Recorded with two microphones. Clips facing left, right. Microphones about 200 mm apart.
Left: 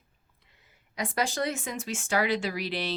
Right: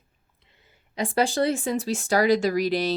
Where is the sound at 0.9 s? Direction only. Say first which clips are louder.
Right 7 dB; 30° right (ahead or behind).